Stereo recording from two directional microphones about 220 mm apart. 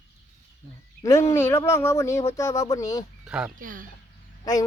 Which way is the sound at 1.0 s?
15° left (ahead or behind).